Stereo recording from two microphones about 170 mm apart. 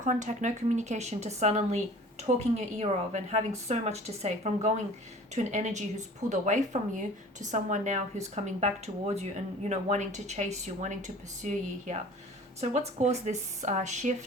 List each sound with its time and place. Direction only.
0.0 s a woman's voice: 45° right (ahead or behind)